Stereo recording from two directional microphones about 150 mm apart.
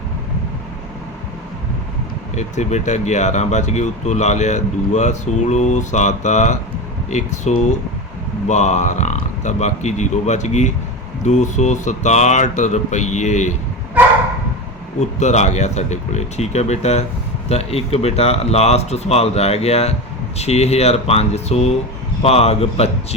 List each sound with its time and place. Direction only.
2.3 s speech: 50° left (ahead or behind)
15.2 s speech: 50° left (ahead or behind)